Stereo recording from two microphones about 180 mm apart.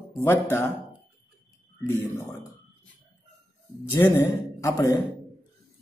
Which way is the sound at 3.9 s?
15° left (ahead or behind).